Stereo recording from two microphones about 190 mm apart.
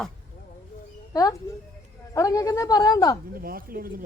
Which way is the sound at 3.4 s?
50° right (ahead or behind).